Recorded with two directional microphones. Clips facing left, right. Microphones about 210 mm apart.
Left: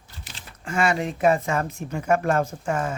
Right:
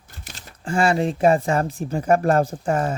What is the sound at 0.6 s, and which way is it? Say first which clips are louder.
Speech: right 4 dB; 30° right (ahead or behind).